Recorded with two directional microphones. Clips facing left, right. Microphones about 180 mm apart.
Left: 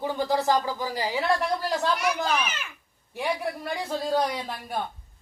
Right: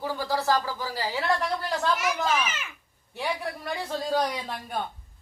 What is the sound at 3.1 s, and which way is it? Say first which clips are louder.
A woman's voice: left 2 dB; 10° left (ahead or behind).